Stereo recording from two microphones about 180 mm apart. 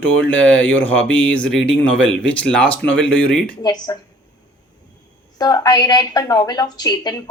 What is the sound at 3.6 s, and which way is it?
Speech, 20° left (ahead or behind).